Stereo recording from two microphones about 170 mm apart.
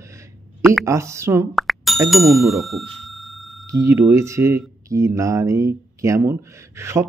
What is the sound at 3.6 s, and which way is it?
Speech, 20° right (ahead or behind).